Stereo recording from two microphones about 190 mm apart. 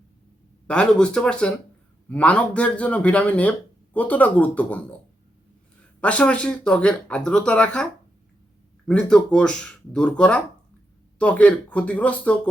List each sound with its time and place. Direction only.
0.7 s a man's voice: 5° left (ahead or behind)
6.0 s speech: 5° left (ahead or behind)
8.9 s a man's voice: 5° left (ahead or behind)